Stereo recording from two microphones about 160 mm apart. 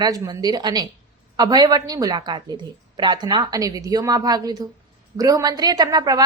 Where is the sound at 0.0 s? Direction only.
25° right (ahead or behind).